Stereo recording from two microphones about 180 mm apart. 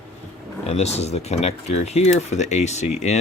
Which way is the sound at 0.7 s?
35° left (ahead or behind).